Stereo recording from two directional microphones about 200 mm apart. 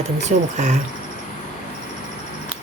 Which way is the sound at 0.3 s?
35° right (ahead or behind).